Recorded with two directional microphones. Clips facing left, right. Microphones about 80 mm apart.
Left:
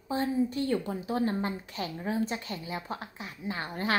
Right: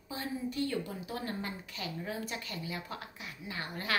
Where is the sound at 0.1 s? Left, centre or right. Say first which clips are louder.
Left 9 dB; left.